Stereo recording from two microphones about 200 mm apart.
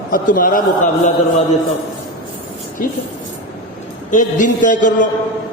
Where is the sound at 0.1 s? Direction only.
45° left (ahead or behind).